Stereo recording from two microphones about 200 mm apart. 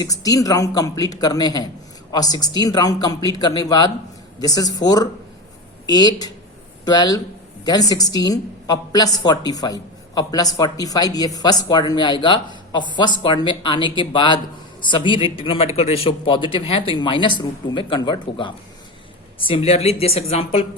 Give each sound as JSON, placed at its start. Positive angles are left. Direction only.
{"t": 0.0, "sound": "a woman's voice", "side_deg": 20}